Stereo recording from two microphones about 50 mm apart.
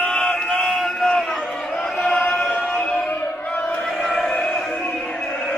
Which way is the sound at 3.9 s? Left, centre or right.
Centre.